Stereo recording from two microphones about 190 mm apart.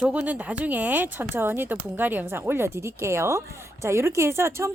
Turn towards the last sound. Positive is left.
turn(degrees=-15)  # may be behind; listen again after turning